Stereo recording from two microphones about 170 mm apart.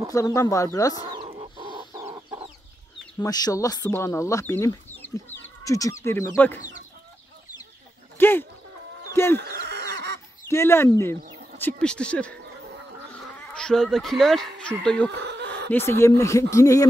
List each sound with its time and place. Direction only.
0.1 s speech: 20° left (ahead or behind)
1.4 s chicken: 30° right (ahead or behind)
2.0 s chicken: 15° right (ahead or behind)
3.2 s speech: 25° left (ahead or behind)
8.2 s speech: 10° left (ahead or behind)
9.4 s goose: 75° right (ahead or behind)
10.5 s speech: 15° left (ahead or behind)
15.2 s chicken: 85° right
15.7 s speech: 15° left (ahead or behind)